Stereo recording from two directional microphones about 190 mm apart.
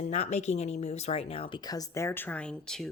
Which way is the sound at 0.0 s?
35° left (ahead or behind).